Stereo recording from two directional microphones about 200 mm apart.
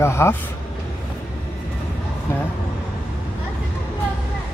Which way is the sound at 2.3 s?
15° left (ahead or behind).